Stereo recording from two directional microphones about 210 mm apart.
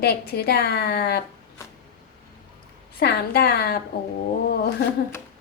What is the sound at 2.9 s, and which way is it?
Speech, 50° left (ahead or behind).